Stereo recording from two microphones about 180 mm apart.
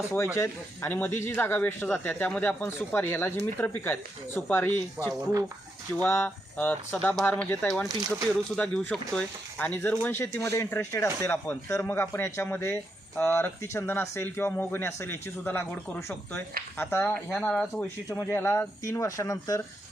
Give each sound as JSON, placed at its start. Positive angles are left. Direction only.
{"t": 0.3, "sound": "a man's voice", "side_deg": 15}
{"t": 5.0, "sound": "speech", "side_deg": -20}
{"t": 6.0, "sound": "a man's voice", "side_deg": 10}
{"t": 7.9, "sound": "speech", "side_deg": -20}
{"t": 8.5, "sound": "a man's voice", "side_deg": 5}
{"t": 17.3, "sound": "speech", "side_deg": 0}
{"t": 18.1, "sound": "a man's voice", "side_deg": 15}